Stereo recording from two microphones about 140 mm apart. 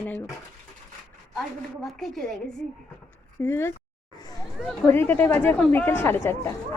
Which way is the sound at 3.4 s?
15° left (ahead or behind).